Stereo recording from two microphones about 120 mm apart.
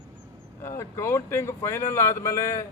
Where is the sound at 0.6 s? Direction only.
20° left (ahead or behind).